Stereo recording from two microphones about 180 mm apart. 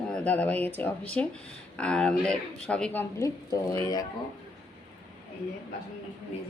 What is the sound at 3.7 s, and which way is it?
Speech, 20° left (ahead or behind).